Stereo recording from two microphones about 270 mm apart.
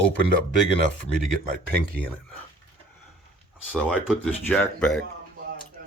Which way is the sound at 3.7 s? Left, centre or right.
Centre.